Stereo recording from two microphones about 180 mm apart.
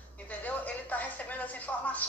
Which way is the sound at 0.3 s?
10° left (ahead or behind).